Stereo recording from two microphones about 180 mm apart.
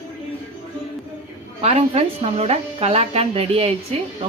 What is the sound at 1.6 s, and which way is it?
A woman's voice, 35° right (ahead or behind).